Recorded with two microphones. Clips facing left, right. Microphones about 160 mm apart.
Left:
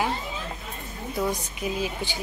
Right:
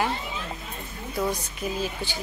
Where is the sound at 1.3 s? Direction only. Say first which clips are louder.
Left 1 dB; 20° left (ahead or behind).